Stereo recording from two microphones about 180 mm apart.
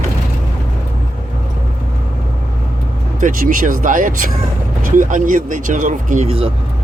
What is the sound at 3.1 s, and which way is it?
Speech, 50° right (ahead or behind).